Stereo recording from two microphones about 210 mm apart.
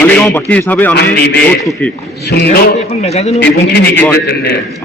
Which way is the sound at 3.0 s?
30° left (ahead or behind).